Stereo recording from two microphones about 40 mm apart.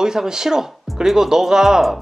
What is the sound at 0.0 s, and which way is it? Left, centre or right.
Speech, centre.